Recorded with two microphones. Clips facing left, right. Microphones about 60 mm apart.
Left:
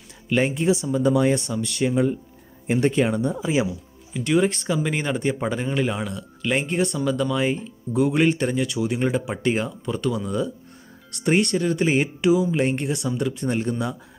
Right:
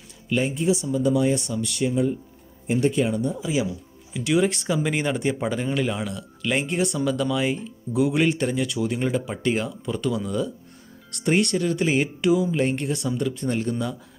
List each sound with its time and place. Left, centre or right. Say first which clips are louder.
0.3 s speech: left 2 dB; left
1.9 s speech: left 2 dB; left
3.2 s speech: left 2 dB; left
4.1 s speech: left 1 dB; centre
9.7 s speech: left 1 dB; centre
12.8 s speech: left 1 dB; centre